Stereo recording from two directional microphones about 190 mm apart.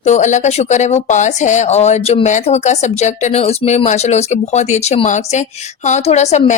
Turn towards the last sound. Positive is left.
turn(degrees=35)  # may be behind; listen again after turning